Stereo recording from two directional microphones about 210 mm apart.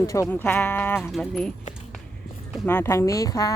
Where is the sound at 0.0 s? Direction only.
15° left (ahead or behind).